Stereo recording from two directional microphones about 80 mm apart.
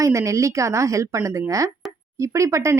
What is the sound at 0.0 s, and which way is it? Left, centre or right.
Speech, right.